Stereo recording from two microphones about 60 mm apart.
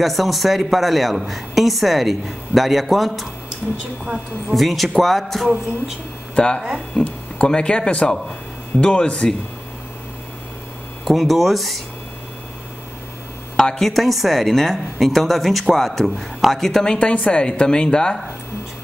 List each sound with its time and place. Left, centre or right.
0.0 s a woman's voice: centre
4.0 s a woman's voice: centre
4.6 s a woman's voice: centre
6.3 s speech: centre
11.1 s a woman's voice: centre
13.6 s a woman's voice: centre